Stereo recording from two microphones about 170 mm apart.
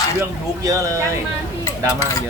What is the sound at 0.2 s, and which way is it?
Speech, 20° right (ahead or behind).